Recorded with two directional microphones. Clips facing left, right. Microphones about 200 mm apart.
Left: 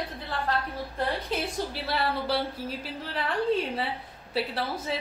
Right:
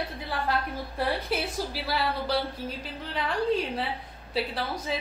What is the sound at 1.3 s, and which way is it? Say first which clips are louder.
A woman's voice: even; 10° right (ahead or behind).